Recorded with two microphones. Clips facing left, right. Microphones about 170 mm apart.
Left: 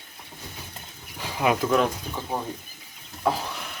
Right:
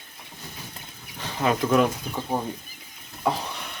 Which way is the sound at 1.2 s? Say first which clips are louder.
Left 1 dB; 10° left (ahead or behind).